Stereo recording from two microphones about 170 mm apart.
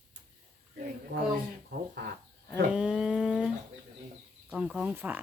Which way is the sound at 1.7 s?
55° right (ahead or behind).